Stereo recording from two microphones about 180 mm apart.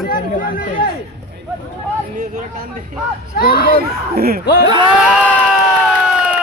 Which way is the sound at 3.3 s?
55° left (ahead or behind).